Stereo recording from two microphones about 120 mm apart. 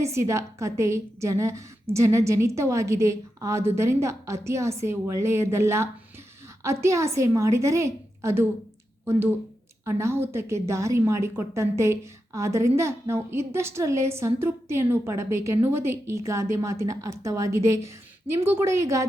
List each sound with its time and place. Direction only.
0.0 s a woman's voice: 25° right (ahead or behind)
9.8 s a woman's voice: 25° right (ahead or behind)